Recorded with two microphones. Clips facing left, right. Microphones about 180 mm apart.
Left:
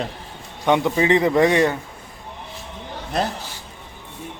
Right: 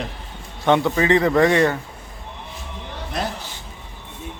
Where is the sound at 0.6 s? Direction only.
15° left (ahead or behind).